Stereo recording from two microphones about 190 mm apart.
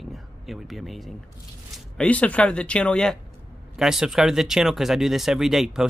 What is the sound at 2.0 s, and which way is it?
Speech, 5° left (ahead or behind).